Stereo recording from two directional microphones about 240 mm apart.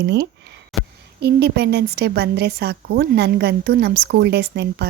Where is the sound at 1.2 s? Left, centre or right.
Right.